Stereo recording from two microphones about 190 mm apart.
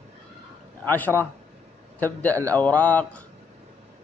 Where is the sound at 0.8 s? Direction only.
10° left (ahead or behind).